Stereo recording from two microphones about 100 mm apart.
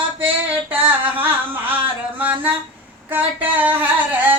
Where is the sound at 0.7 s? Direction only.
15° right (ahead or behind).